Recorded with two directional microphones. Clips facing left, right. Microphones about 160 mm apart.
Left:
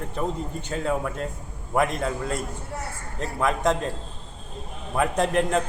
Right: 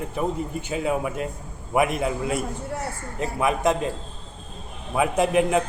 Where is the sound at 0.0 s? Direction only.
10° right (ahead or behind).